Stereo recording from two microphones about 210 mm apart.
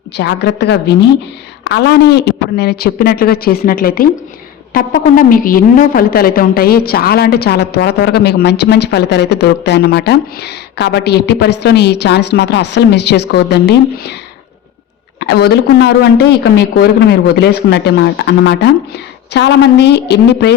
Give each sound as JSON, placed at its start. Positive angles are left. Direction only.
{"t": 0.2, "sound": "a woman's voice", "side_deg": 55}
{"t": 15.2, "sound": "a woman's voice", "side_deg": 50}